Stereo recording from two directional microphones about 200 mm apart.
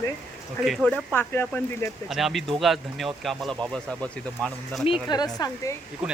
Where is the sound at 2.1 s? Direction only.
Centre (ahead or behind).